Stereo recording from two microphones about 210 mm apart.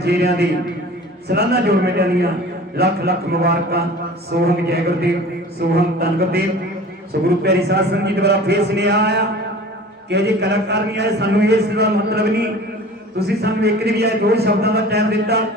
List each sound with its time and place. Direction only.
0.0 s a man's voice: 50° right (ahead or behind)
7.4 s a man's voice: 50° right (ahead or behind)